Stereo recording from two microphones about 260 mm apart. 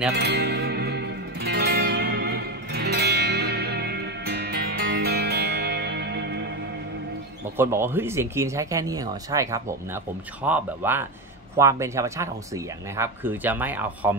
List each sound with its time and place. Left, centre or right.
0.1 s music: right
7.5 s speech: centre